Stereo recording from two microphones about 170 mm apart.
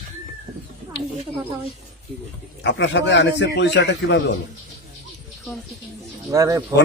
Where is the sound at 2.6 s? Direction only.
90° left.